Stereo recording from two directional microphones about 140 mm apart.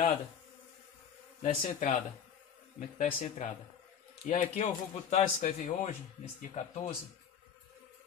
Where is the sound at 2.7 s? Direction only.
60° left (ahead or behind).